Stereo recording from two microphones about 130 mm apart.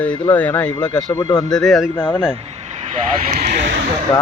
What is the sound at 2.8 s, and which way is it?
Speech, 60° right (ahead or behind).